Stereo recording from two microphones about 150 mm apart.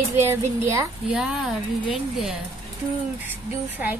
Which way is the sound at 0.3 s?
15° right (ahead or behind).